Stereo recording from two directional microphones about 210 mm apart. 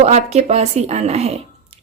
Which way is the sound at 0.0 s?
30° right (ahead or behind).